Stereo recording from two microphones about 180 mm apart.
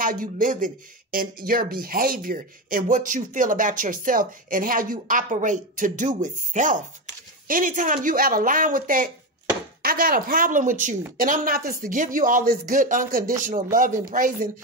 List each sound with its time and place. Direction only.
0.0 s speech: 50° right (ahead or behind)